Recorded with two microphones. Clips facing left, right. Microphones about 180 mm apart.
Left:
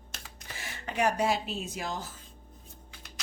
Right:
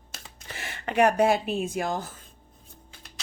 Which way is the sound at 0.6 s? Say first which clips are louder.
Right 8 dB; 65° right (ahead or behind).